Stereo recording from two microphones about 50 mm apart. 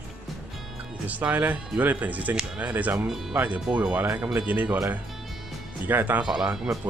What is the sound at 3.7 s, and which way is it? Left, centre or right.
Speech, right.